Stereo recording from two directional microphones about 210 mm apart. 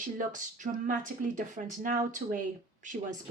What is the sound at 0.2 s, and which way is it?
Speech, 40° right (ahead or behind).